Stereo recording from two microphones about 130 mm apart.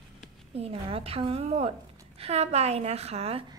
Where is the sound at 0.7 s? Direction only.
45° right (ahead or behind).